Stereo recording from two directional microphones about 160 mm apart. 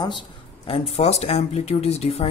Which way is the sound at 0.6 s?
35° left (ahead or behind).